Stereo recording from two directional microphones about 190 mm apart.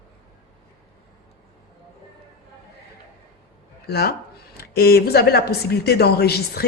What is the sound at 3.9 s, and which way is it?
Speech, 55° left (ahead or behind).